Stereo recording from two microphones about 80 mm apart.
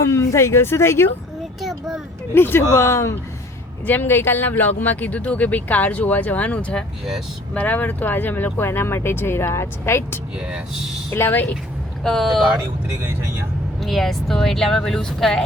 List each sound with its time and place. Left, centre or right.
0.0 s speech: left
2.3 s speech: left
3.8 s speech: left
10.4 s speech: centre
11.1 s speech: left
12.0 s speech: centre
13.8 s speech: centre